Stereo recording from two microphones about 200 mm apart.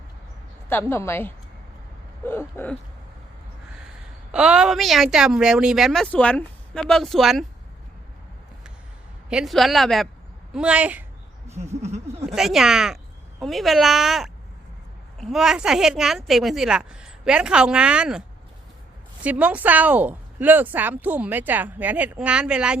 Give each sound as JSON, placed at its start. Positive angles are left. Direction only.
{"t": 0.7, "sound": "a woman's voice", "side_deg": 10}
{"t": 2.2, "sound": "a sound", "side_deg": 10}
{"t": 4.3, "sound": "speech", "side_deg": -5}
{"t": 9.3, "sound": "speech", "side_deg": 0}
{"t": 11.4, "sound": "a sound", "side_deg": -35}
{"t": 12.3, "sound": "speech", "side_deg": 0}
{"t": 19.2, "sound": "speech", "side_deg": -5}